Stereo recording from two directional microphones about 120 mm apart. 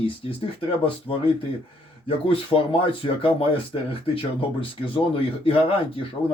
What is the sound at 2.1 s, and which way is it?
Speech, 50° left (ahead or behind).